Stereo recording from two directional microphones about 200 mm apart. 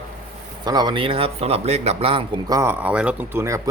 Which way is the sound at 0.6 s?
20° right (ahead or behind).